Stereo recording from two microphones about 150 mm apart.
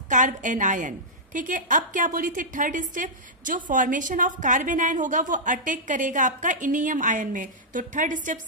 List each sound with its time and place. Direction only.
0.1 s a woman's voice: 55° right (ahead or behind)